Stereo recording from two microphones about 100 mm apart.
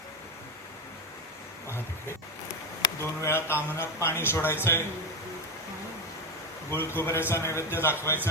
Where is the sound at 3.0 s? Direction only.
25° left (ahead or behind).